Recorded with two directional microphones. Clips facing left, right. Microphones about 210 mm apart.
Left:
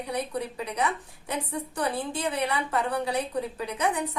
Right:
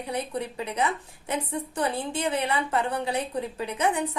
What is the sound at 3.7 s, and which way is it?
Speech, 25° right (ahead or behind).